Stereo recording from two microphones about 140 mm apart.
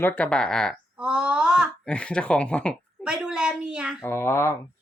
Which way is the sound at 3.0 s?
5° right (ahead or behind).